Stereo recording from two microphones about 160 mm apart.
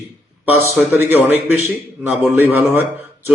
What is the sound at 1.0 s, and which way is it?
A man's voice, 10° right (ahead or behind).